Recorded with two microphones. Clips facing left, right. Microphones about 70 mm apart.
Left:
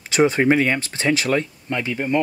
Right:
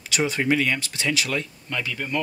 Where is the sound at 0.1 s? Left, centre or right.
Left.